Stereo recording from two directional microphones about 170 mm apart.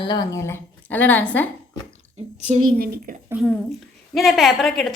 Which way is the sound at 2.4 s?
45° right (ahead or behind).